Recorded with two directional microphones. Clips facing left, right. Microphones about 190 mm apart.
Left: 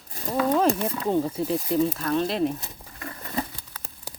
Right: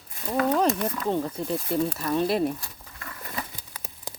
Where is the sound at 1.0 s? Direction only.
5° left (ahead or behind).